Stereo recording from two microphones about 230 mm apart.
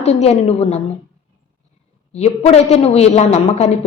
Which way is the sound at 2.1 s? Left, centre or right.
Left.